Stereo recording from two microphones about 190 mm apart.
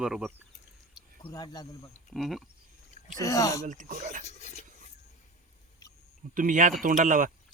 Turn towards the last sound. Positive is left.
turn(degrees=-45)  # may be behind; listen again after turning